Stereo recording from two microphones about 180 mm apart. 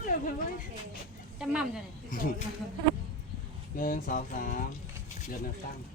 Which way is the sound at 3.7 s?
50° left (ahead or behind).